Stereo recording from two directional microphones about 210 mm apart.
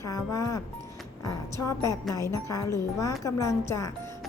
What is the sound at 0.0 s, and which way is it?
A woman's voice, 15° left (ahead or behind).